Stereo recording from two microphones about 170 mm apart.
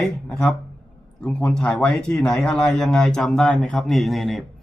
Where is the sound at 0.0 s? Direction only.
5° left (ahead or behind).